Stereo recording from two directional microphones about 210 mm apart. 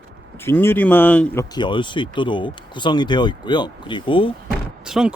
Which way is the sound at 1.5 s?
20° left (ahead or behind).